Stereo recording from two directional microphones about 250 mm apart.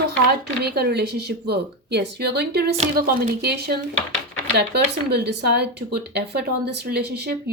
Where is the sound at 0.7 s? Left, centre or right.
Right.